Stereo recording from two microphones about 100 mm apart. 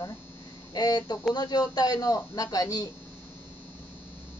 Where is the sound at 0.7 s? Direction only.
40° left (ahead or behind).